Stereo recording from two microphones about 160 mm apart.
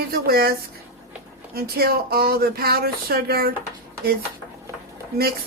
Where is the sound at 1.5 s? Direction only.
70° right (ahead or behind).